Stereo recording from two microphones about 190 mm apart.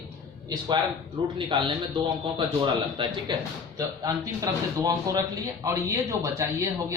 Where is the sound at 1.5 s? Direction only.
25° right (ahead or behind).